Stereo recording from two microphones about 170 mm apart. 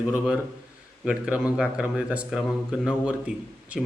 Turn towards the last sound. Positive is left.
turn(degrees=-5)  # may be behind; listen again after turning